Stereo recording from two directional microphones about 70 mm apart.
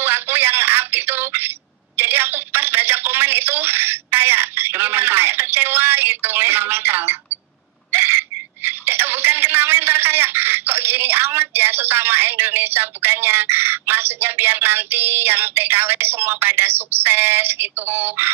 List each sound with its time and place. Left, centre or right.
0.0 s telephone: right